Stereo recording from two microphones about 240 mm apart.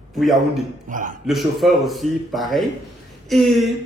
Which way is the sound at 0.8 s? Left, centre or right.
Right.